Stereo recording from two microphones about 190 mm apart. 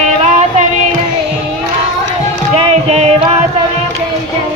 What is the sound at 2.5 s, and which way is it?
Music, 30° right (ahead or behind).